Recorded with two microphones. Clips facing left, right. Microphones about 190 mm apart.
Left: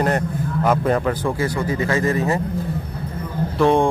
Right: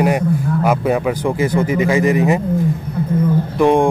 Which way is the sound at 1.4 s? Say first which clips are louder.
Right 9 dB; 20° right (ahead or behind).